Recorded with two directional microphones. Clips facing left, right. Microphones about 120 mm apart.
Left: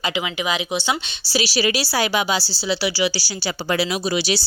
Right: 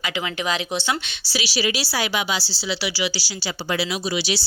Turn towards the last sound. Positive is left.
turn(degrees=45)  # may be behind; listen again after turning